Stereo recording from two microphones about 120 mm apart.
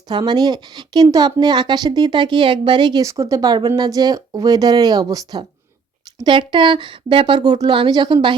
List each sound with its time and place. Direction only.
0.1 s a woman's voice: 40° right (ahead or behind)